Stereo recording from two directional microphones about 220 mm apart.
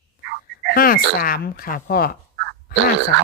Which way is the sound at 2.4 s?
50° right (ahead or behind).